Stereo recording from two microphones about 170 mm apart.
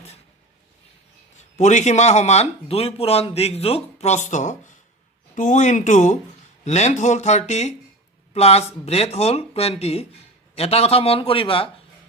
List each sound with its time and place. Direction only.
1.5 s speech: 45° left (ahead or behind)